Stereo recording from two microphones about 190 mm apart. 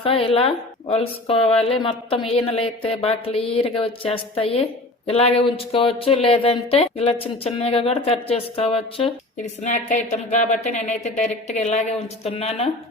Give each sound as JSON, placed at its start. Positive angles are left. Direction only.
{"t": 0.0, "sound": "a woman's voice", "side_deg": 30}
{"t": 9.6, "sound": "speech", "side_deg": 40}